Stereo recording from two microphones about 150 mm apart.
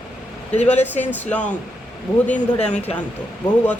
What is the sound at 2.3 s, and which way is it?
Speech, 50° left (ahead or behind).